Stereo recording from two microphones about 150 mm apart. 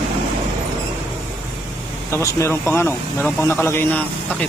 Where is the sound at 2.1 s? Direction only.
15° left (ahead or behind).